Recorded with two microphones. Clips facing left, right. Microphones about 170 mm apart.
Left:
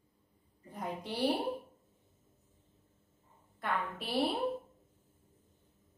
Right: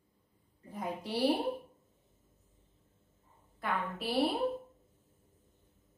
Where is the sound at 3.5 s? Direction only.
Centre (ahead or behind).